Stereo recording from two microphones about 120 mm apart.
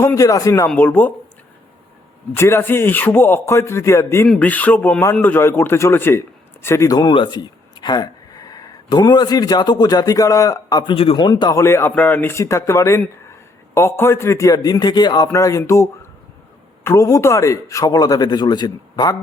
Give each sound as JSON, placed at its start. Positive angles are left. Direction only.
{"t": 0.0, "sound": "a man's voice", "side_deg": 25}
{"t": 0.7, "sound": "speech", "side_deg": 15}
{"t": 2.3, "sound": "a man's voice", "side_deg": 20}
{"t": 10.9, "sound": "a man's voice", "side_deg": 50}
{"t": 11.5, "sound": "a man's voice", "side_deg": 20}
{"t": 15.3, "sound": "a man's voice", "side_deg": 25}